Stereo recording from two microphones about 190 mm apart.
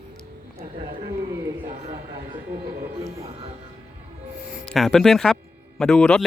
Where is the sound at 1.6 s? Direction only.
35° right (ahead or behind).